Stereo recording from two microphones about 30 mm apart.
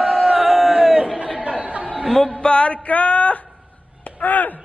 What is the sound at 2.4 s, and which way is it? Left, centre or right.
Music, left.